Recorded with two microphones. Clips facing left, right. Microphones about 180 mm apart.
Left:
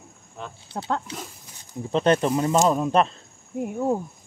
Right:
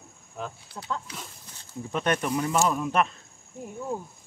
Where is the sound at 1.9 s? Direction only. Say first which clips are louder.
Left 7 dB; 25° left (ahead or behind).